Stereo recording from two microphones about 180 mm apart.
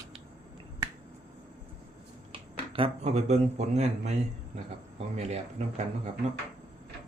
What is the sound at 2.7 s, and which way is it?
Speech, 30° right (ahead or behind).